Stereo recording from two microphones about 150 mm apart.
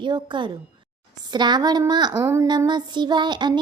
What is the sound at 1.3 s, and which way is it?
Child singing, 30° right (ahead or behind).